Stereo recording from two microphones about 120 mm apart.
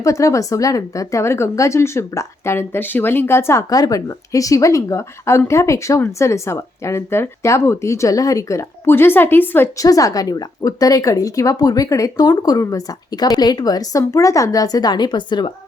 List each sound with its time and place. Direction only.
0.0 s speech: 25° left (ahead or behind)
9.7 s speech: 30° left (ahead or behind)